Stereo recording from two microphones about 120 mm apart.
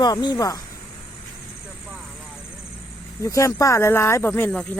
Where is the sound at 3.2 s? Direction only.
25° left (ahead or behind).